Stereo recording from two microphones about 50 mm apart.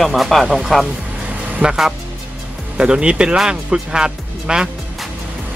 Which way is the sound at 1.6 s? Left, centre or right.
Right.